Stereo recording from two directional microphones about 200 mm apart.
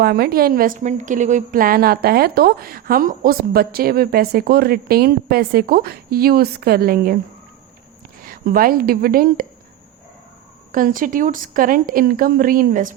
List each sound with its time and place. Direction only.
0.0 s a woman's voice: 50° right (ahead or behind)
8.2 s a woman's voice: 45° right (ahead or behind)
10.7 s a woman's voice: 45° right (ahead or behind)